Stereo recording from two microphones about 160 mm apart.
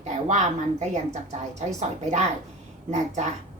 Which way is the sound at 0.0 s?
45° right (ahead or behind).